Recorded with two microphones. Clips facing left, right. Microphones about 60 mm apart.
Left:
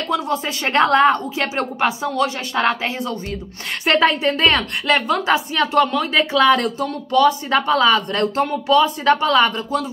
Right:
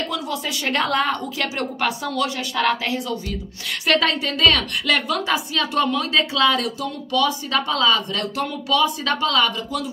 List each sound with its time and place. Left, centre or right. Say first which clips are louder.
0.1 s a woman's voice: left 5 dB; left